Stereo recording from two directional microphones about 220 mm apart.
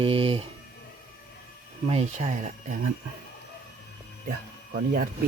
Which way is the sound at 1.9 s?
30° right (ahead or behind).